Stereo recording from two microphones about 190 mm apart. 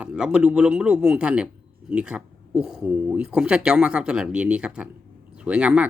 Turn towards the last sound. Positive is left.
turn(degrees=-5)  # may be behind; listen again after turning